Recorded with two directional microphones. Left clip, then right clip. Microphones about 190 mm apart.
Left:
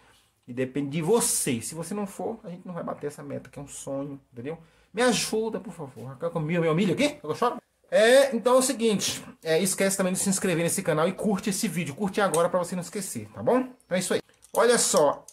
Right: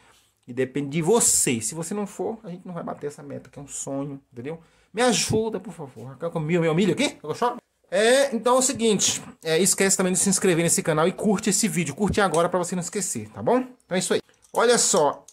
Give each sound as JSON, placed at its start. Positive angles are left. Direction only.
{"t": 0.6, "sound": "speech", "side_deg": -30}
{"t": 3.8, "sound": "speech", "side_deg": -35}